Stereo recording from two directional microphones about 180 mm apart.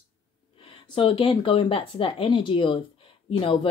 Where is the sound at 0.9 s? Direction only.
30° left (ahead or behind).